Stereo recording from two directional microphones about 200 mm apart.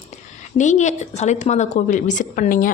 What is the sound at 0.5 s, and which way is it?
Speech, 35° left (ahead or behind).